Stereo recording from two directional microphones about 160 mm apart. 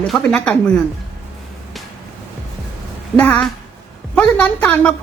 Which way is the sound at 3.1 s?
10° left (ahead or behind).